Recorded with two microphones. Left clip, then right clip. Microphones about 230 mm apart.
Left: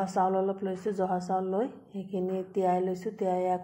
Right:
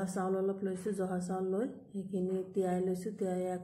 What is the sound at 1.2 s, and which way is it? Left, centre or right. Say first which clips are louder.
Speech: left 6 dB; left.